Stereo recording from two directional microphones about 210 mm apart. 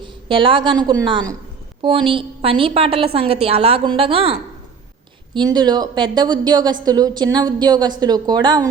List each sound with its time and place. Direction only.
0.0 s a woman's voice: 25° right (ahead or behind)